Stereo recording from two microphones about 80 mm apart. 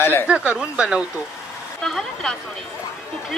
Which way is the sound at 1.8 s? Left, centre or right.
Centre.